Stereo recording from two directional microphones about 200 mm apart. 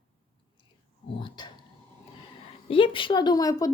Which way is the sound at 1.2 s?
25° left (ahead or behind).